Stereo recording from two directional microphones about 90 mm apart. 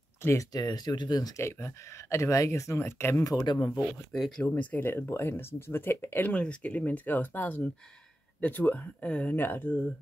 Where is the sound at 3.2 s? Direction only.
45° left (ahead or behind).